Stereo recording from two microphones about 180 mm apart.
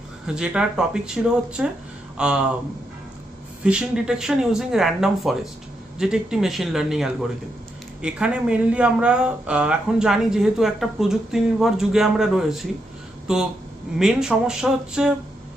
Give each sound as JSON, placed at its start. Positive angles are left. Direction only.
{"t": 0.3, "sound": "speech", "side_deg": -5}
{"t": 3.6, "sound": "speech", "side_deg": -5}